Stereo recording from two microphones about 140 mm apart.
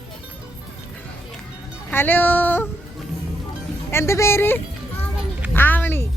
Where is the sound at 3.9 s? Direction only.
20° left (ahead or behind).